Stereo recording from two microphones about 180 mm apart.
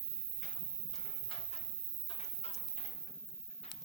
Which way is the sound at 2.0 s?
35° left (ahead or behind).